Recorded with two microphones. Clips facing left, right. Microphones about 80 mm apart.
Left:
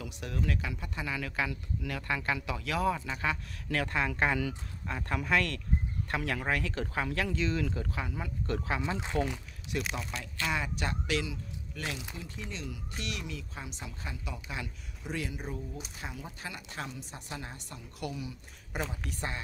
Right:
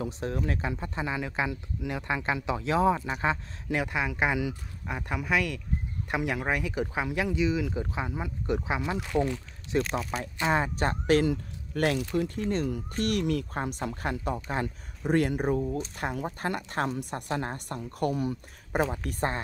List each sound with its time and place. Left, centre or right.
0.0 s speech: right; by 7.8 s centre
7.8 s speech: right
9.0 s speech: left
9.8 s speech: centre
10.5 s speech: right